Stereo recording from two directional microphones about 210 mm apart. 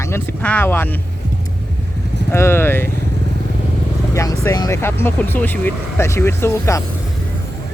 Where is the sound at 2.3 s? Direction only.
10° left (ahead or behind).